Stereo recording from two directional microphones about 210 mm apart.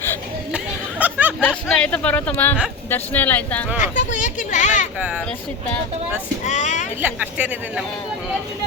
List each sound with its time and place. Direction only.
0.5 s a sound: 5° right (ahead or behind)
1.4 s speech: 5° left (ahead or behind)
3.8 s speech: 35° left (ahead or behind)
6.4 s speech: 35° left (ahead or behind)
7.0 s speech: 5° right (ahead or behind)